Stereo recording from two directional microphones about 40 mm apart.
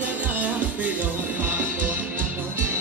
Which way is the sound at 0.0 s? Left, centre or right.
Right.